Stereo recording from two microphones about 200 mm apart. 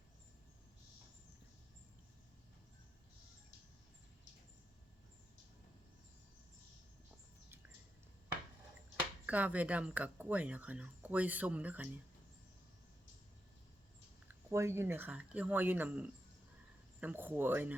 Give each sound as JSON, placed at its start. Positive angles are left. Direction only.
{"t": 9.2, "sound": "speech", "side_deg": -5}
{"t": 14.3, "sound": "speech", "side_deg": -15}